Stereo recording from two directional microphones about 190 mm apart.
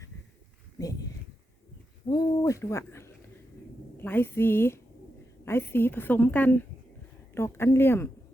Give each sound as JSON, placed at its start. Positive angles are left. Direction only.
{"t": 0.8, "sound": "speech", "side_deg": 20}
{"t": 2.0, "sound": "a woman's voice", "side_deg": 20}